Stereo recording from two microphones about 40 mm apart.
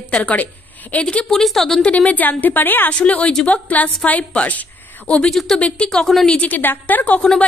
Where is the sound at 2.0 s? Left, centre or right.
Left.